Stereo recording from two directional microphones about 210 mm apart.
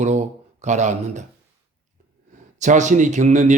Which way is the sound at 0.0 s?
35° right (ahead or behind).